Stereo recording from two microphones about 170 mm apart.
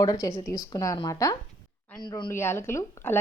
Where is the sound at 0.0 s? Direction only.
20° left (ahead or behind).